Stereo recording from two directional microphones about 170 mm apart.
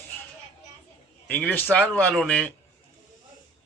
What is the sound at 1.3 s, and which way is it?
A man's voice, 10° left (ahead or behind).